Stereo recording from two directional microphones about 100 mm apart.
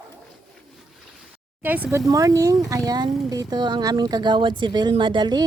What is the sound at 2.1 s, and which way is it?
Speech, 35° right (ahead or behind).